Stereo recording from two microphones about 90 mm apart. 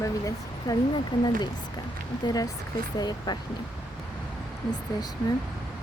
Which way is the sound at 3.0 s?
50° left (ahead or behind).